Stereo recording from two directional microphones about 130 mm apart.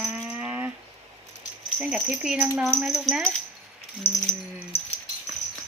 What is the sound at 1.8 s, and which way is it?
A woman's voice, 10° right (ahead or behind).